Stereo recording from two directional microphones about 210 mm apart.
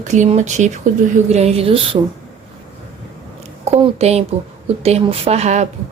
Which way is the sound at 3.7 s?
30° right (ahead or behind).